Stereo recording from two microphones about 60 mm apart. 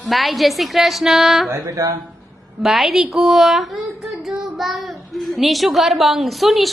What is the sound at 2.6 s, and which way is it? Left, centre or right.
A child's voice, centre.